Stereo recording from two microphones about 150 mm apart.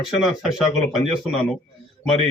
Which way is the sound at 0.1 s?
Centre (ahead or behind).